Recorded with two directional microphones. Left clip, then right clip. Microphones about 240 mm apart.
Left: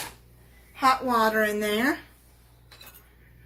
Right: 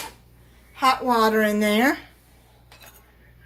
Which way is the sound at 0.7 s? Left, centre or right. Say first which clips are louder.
Right 2 dB; right.